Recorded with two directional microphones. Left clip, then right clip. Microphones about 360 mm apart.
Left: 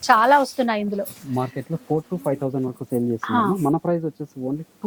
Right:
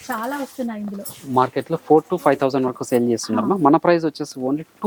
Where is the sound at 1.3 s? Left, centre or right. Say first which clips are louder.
Right 9 dB; centre.